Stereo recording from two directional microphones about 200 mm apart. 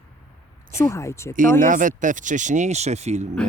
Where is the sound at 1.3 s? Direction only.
40° right (ahead or behind).